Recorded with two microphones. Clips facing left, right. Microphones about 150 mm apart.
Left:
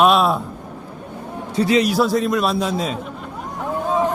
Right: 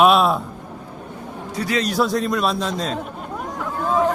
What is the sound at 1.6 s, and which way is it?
Speech, 20° left (ahead or behind).